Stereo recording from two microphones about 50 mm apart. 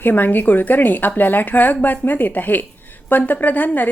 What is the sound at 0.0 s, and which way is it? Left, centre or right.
A woman's voice, left.